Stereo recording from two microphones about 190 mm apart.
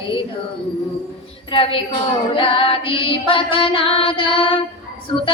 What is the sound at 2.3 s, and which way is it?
Music, 30° left (ahead or behind).